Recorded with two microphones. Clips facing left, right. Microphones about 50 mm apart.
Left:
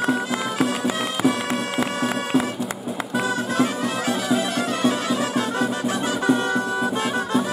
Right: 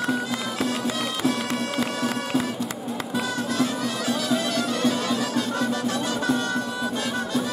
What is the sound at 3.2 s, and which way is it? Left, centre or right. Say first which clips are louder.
Music: left 4 dB; centre.